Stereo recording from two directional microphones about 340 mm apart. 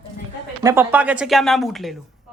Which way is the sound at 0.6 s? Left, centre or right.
Centre.